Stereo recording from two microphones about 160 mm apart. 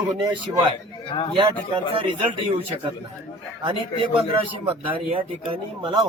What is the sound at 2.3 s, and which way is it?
Speech, 30° right (ahead or behind).